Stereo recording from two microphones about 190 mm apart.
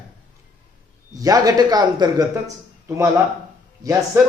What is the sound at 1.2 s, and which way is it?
Speech, 20° right (ahead or behind).